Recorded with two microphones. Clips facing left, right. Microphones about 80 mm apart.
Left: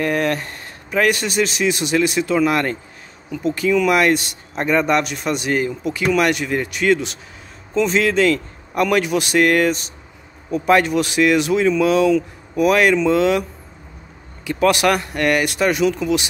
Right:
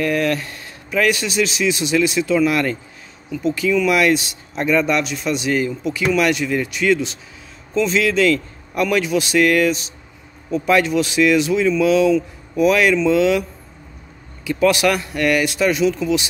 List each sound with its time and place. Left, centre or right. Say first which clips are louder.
0.0 s speech: even; left